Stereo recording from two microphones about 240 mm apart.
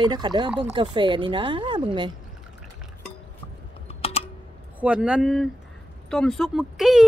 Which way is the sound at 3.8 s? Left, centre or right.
Left.